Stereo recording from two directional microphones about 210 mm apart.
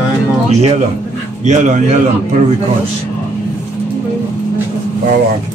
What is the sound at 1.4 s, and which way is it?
Speech, 35° right (ahead or behind).